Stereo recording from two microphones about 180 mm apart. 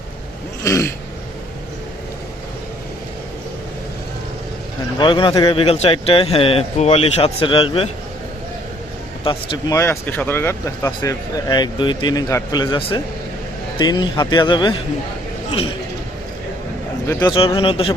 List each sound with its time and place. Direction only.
0.6 s throat clearing: 15° left (ahead or behind)
4.9 s speech: 30° left (ahead or behind)
9.2 s speech: 25° left (ahead or behind)
17.2 s speech: 30° left (ahead or behind)